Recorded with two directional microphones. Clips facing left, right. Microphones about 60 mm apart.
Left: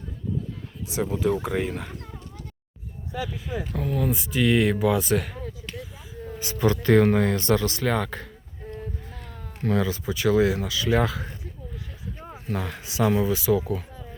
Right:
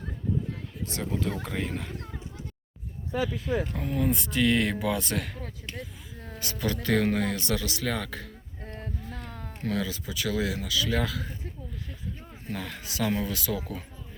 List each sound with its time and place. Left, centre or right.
0.9 s speech: centre
3.4 s speech: centre
3.8 s speech: centre
4.1 s speech: centre
5.4 s a sound: right
6.4 s speech: left
8.6 s a sound: right
9.6 s speech: left
12.3 s speech: centre